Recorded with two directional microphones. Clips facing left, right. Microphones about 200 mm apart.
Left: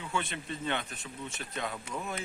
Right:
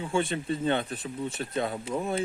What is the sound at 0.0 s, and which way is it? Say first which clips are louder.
Speech: right 8 dB; 30° right (ahead or behind).